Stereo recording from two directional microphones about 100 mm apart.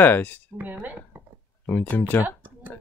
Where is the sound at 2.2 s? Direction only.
15° right (ahead or behind).